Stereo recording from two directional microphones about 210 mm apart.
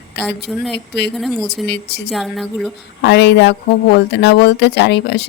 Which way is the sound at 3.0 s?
55° left (ahead or behind).